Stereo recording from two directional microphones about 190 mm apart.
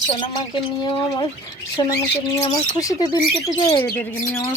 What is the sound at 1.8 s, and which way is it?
Speech, 25° left (ahead or behind).